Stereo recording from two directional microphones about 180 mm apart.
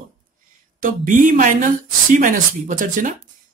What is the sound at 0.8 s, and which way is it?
Speech, 45° right (ahead or behind).